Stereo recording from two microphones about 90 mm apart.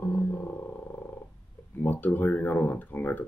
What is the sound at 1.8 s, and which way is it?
Speech, 20° left (ahead or behind).